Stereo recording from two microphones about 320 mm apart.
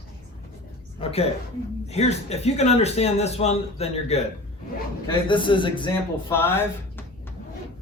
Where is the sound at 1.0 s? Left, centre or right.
Centre.